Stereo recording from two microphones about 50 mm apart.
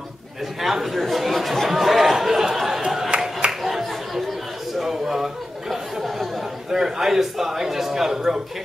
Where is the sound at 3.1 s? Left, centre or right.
Centre.